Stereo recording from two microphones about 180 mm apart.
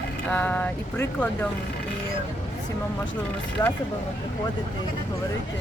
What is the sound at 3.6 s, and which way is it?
Speech, 15° left (ahead or behind).